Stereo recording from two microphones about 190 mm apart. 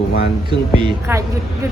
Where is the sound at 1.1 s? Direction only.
10° right (ahead or behind).